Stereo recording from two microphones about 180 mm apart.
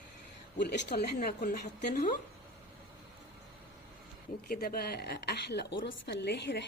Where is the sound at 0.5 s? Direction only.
70° left (ahead or behind).